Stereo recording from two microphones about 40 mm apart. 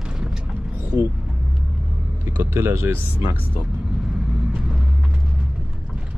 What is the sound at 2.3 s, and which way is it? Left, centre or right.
Speech, right.